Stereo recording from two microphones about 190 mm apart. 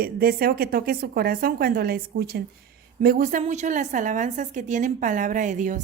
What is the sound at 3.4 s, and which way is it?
A woman's voice, 40° right (ahead or behind).